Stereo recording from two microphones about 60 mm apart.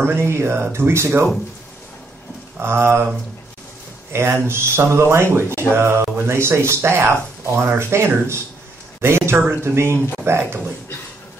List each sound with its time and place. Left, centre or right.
0.0 s speech: right
2.6 s speech: right
4.1 s speech: right